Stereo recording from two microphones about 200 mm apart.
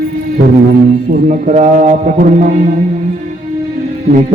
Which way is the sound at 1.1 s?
40° right (ahead or behind).